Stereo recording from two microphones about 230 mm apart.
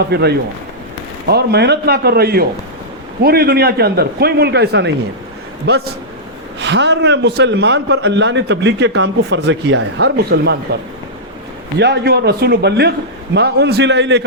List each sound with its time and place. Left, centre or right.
0.0 s a man's voice: right
11.8 s a man's voice: right